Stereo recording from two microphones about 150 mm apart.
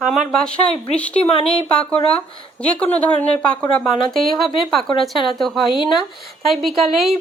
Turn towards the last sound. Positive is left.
turn(degrees=0)  # may be behind; listen again after turning